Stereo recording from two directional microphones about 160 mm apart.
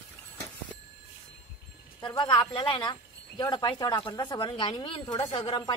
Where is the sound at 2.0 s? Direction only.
25° left (ahead or behind).